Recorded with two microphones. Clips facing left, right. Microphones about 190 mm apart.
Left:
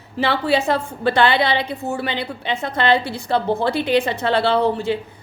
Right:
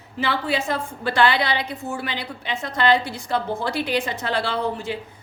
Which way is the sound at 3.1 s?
65° left (ahead or behind).